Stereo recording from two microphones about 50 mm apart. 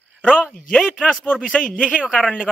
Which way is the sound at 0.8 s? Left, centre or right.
Centre.